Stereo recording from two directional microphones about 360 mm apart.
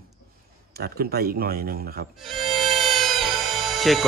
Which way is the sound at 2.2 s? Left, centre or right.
Centre.